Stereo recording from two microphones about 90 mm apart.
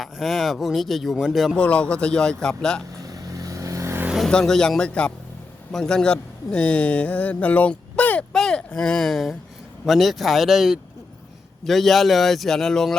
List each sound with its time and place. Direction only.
0.0 s speech: centre (ahead or behind)
1.5 s a man's voice: 10° left (ahead or behind)
3.0 s vehicle: 40° right (ahead or behind)
4.3 s a man's voice: 5° left (ahead or behind)
8.3 s a sound: 5° left (ahead or behind)
9.8 s speech: centre (ahead or behind)